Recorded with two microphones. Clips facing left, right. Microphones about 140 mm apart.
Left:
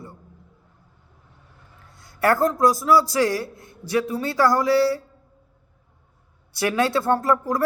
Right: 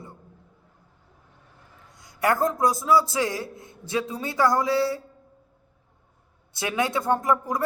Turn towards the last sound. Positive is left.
turn(degrees=-20)  # may be behind; listen again after turning